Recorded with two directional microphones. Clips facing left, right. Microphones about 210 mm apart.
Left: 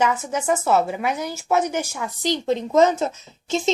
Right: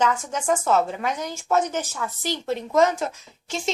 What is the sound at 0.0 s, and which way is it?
A woman's voice, 10° left (ahead or behind).